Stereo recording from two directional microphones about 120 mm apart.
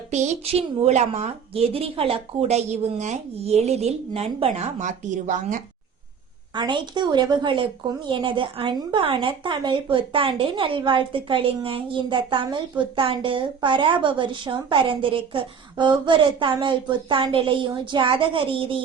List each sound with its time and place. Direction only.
0.1 s a woman's voice: 70° right (ahead or behind); by 5.5 s 90° right
6.6 s speech: 40° right (ahead or behind)